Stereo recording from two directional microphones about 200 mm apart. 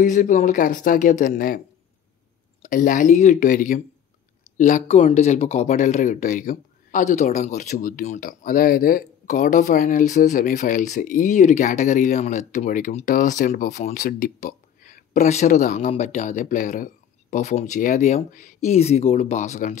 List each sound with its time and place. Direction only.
0.0 s speech: 40° left (ahead or behind)
2.6 s speech: 40° left (ahead or behind)